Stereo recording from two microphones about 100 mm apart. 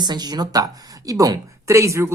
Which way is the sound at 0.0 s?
45° right (ahead or behind).